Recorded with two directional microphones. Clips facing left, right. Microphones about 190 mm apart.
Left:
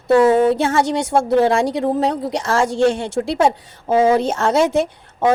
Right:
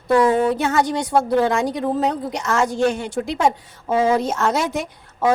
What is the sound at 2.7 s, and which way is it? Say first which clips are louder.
Speech: left 5 dB; 85° left.